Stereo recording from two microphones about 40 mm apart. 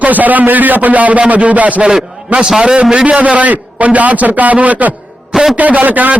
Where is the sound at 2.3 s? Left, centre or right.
Right.